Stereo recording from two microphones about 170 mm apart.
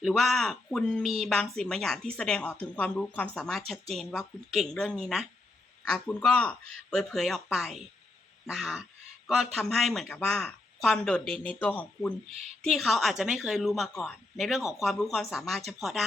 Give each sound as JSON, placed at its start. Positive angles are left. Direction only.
{"t": 0.0, "sound": "speech", "side_deg": 0}